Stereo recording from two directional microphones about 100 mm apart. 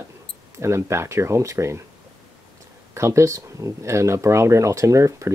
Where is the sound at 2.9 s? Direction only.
30° right (ahead or behind).